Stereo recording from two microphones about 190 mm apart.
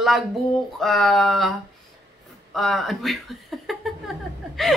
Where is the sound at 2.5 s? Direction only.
Centre (ahead or behind).